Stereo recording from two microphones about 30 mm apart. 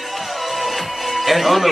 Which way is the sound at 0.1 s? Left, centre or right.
Centre.